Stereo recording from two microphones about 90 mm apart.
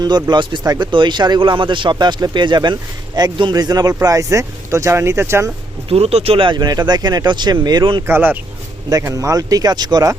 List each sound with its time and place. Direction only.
0.0 s speech: 50° right (ahead or behind)
0.6 s speech: 45° right (ahead or behind)
0.9 s speech: 65° right (ahead or behind)
3.5 s speech: 45° right (ahead or behind); by 5.5 s 30° right (ahead or behind)
5.9 s speech: 90° right
6.6 s speech: 50° right (ahead or behind)
8.0 s speech: 25° right (ahead or behind)
9.0 s speech: 40° right (ahead or behind)